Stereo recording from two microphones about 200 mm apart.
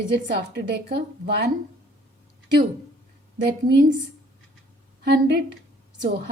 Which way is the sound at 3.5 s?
55° right (ahead or behind).